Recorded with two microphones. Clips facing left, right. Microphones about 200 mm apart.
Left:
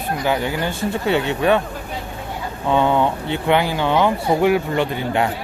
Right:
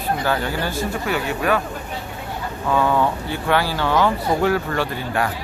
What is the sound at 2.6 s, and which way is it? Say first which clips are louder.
Speech: left 2 dB; 25° left (ahead or behind).